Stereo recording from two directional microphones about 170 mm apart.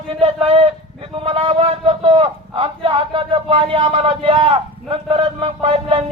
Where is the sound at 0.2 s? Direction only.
35° right (ahead or behind).